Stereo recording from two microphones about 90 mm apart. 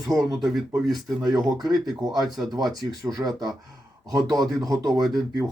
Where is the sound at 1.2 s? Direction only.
40° right (ahead or behind).